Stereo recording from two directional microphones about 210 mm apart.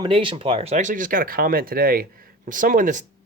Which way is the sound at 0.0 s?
25° right (ahead or behind).